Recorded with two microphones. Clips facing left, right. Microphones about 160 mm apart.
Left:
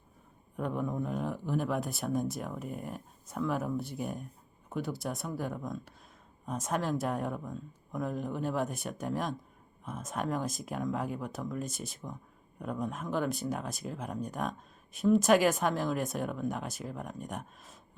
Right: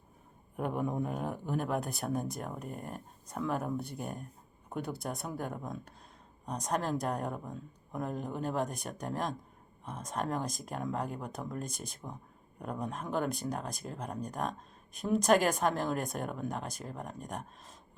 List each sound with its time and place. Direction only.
0.5 s a man's voice: 50° right (ahead or behind)
1.3 s speech: centre (ahead or behind)